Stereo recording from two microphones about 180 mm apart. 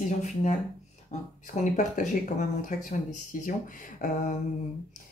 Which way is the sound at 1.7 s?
45° left (ahead or behind).